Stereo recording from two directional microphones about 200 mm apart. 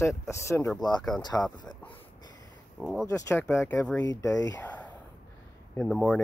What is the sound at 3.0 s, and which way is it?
Speech, 15° left (ahead or behind).